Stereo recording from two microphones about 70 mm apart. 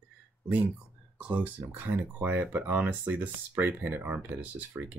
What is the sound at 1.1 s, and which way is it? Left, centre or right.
Speech, right.